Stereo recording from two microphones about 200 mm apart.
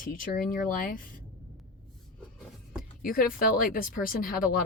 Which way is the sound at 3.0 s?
45° left (ahead or behind).